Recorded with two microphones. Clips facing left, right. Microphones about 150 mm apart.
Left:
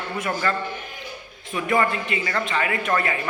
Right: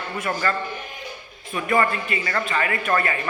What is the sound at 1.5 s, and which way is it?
A man's voice, 15° left (ahead or behind).